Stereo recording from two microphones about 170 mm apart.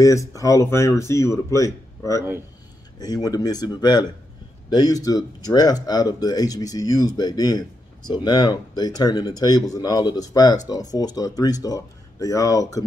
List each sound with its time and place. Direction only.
0.0 s speech: 20° left (ahead or behind)